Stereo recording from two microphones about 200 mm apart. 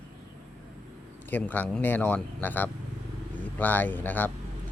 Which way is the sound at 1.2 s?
10° left (ahead or behind).